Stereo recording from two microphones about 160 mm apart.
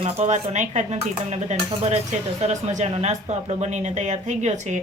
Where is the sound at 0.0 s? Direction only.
45° right (ahead or behind).